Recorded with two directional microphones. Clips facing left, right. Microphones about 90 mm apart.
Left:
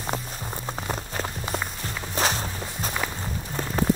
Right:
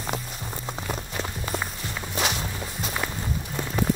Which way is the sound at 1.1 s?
35° left (ahead or behind).